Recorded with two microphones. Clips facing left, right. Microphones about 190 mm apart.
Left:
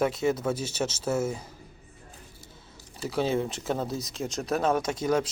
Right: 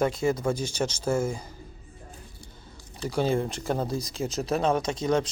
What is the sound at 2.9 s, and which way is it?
Speech, centre (ahead or behind).